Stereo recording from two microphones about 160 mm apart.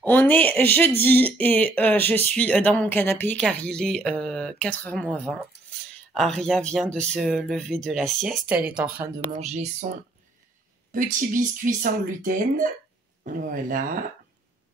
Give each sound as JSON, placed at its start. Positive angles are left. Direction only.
{"t": 0.0, "sound": "a woman's voice", "side_deg": 10}
{"t": 9.4, "sound": "speech", "side_deg": -45}